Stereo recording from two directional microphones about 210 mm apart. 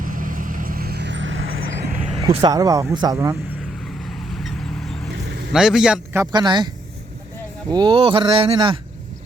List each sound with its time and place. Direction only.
0.0 s vehicle: 40° right (ahead or behind); by 1.6 s 70° right (ahead or behind)
1.9 s speech: 30° right (ahead or behind)
4.0 s vehicle: centre (ahead or behind)
5.5 s a man's voice: centre (ahead or behind)
6.3 s speech: 20° right (ahead or behind)
7.7 s speech: 20° right (ahead or behind)